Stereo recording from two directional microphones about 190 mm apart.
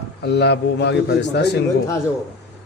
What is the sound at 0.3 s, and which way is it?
A man's voice, 60° left (ahead or behind).